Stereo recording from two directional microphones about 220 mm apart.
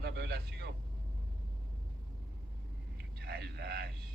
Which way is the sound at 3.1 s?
45° right (ahead or behind).